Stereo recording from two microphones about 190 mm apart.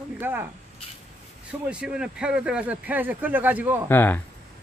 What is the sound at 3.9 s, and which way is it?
Speech, 10° left (ahead or behind).